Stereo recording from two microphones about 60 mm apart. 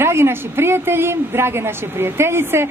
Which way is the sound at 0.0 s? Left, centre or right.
Right.